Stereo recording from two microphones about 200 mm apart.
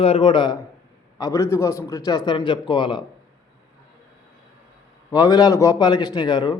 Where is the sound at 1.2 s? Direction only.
15° left (ahead or behind).